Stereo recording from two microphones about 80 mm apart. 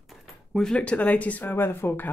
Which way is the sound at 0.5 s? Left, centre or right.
Centre.